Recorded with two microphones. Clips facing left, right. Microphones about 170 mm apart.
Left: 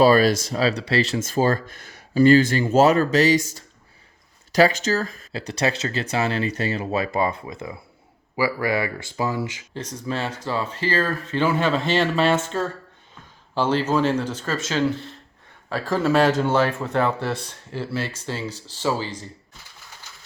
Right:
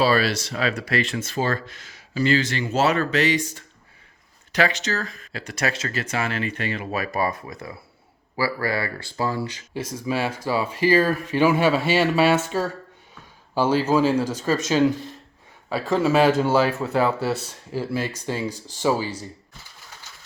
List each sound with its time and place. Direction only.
0.0 s speech: 45° left (ahead or behind)
0.6 s speech: 30° left (ahead or behind)
1.2 s speech: 45° left (ahead or behind); by 9.6 s 15° left (ahead or behind)
9.7 s speech: 10° right (ahead or behind)
15.7 s speech: 5° right (ahead or behind)